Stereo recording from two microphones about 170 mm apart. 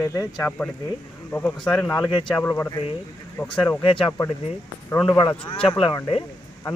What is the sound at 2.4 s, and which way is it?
Speech, 15° left (ahead or behind).